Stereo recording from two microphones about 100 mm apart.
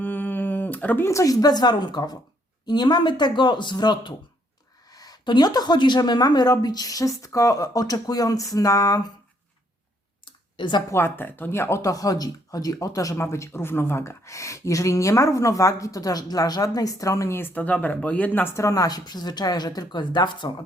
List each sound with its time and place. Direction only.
0.0 s a sound: 20° left (ahead or behind)
1.1 s speech: 35° left (ahead or behind)
10.6 s speech: 50° left (ahead or behind)
10.9 s speech: 20° left (ahead or behind)
18.5 s speech: 35° left (ahead or behind); by 20.7 s 50° left (ahead or behind)